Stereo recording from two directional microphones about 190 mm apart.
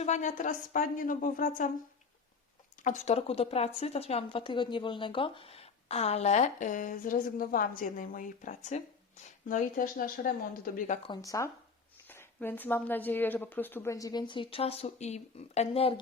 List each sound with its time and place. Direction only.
0.0 s speech: 40° left (ahead or behind)
2.8 s a woman's voice: 40° left (ahead or behind)
11.0 s speech: 20° left (ahead or behind)